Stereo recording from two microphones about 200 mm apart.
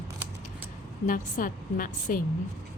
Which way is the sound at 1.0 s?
45° left (ahead or behind).